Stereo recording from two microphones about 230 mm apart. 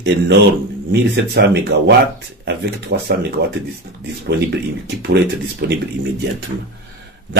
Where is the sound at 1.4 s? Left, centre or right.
Right.